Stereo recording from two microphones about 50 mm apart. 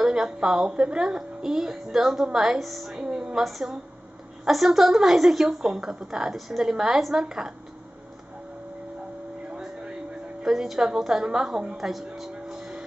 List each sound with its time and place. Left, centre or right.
0.0 s a woman's voice: centre
3.0 s a sound: centre
3.3 s a woman's voice: centre
10.4 s a woman's voice: centre